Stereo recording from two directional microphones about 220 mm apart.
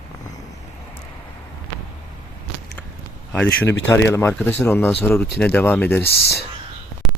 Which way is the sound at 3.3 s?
5° left (ahead or behind).